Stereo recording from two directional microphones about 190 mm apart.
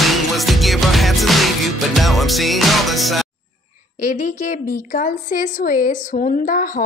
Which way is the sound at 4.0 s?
40° left (ahead or behind).